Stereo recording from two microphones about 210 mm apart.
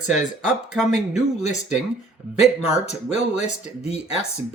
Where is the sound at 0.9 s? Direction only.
35° left (ahead or behind).